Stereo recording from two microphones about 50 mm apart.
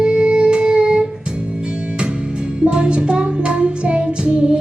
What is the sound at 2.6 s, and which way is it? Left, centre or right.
Music, centre.